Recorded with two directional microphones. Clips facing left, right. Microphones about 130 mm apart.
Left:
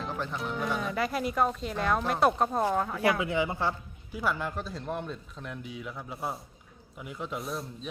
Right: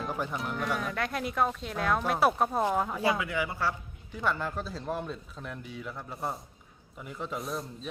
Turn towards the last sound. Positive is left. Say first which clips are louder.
# even
turn(degrees=0)  # may be behind; listen again after turning